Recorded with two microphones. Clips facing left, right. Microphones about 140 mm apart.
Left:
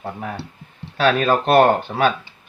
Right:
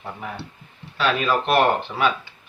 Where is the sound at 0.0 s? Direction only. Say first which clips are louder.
Left 4 dB; 40° left (ahead or behind).